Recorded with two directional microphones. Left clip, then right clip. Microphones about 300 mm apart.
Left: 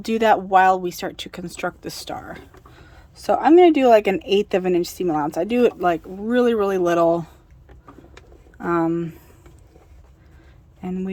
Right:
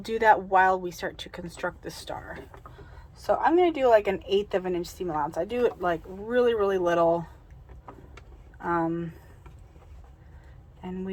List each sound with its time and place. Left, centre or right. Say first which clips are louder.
0.0 s a woman's voice: left 4 dB; left
8.5 s speech: left 6 dB; left